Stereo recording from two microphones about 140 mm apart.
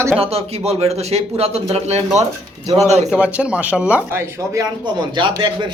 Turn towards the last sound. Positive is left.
turn(degrees=-35)  # may be behind; listen again after turning